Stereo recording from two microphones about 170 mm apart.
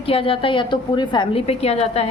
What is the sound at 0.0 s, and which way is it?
A woman's voice, 30° left (ahead or behind).